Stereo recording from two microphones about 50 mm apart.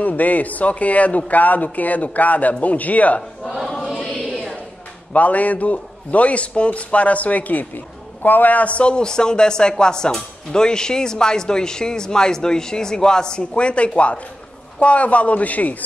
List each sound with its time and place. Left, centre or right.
0.0 s speech: left
3.8 s choir: centre
5.1 s a man's voice: left